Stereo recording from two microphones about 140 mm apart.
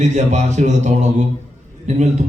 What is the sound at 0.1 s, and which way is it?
A man's voice, 60° right (ahead or behind).